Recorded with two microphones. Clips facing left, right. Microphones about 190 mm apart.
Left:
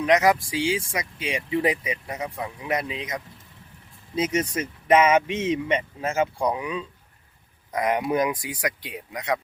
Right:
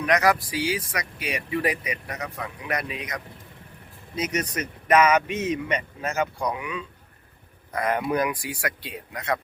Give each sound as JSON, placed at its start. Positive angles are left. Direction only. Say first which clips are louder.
{"t": 0.0, "sound": "speech", "louder": "left 2 dB", "side_deg": 20}
{"t": 7.7, "sound": "speech", "louder": "left 1 dB", "side_deg": 15}